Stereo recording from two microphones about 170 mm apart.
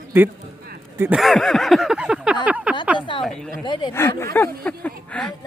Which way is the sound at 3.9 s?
15° left (ahead or behind).